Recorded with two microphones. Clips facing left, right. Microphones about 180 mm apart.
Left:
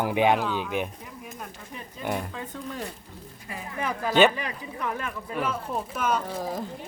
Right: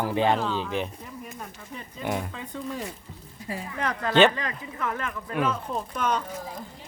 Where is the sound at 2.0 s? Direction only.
Centre (ahead or behind).